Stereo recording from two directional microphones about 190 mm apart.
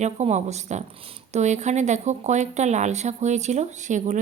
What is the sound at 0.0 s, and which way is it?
Speech, 35° right (ahead or behind).